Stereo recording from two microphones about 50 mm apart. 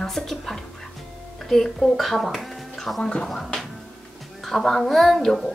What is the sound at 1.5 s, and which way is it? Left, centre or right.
Speech, centre.